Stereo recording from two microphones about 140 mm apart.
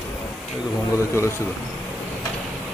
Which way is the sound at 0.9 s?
20° left (ahead or behind).